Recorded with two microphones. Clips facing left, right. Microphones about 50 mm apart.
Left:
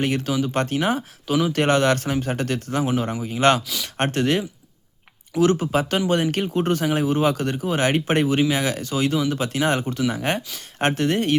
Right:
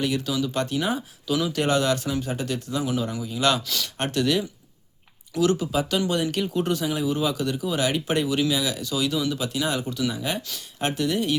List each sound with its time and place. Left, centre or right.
0.0 s speech: left